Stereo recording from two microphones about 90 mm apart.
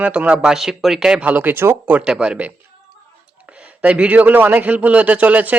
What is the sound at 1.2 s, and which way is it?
Speech, 20° right (ahead or behind).